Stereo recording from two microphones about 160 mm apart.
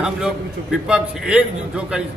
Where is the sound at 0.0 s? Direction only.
5° right (ahead or behind).